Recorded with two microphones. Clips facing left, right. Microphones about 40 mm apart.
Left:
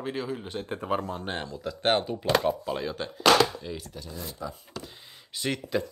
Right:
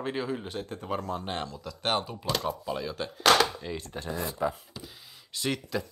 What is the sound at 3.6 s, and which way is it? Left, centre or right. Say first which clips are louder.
Speech: right 1 dB; centre.